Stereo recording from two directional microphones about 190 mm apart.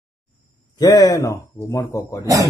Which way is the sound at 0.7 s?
20° left (ahead or behind).